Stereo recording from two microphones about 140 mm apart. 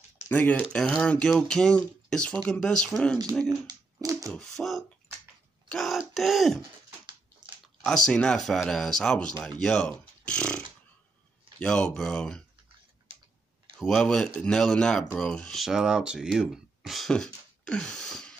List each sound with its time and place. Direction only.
0.3 s speech: 10° left (ahead or behind)
3.4 s speech: 25° right (ahead or behind)
4.3 s speech: 5° left (ahead or behind)
7.8 s speech: 5° left (ahead or behind)
11.6 s speech: 5° left (ahead or behind)
13.7 s speech: 5° left (ahead or behind)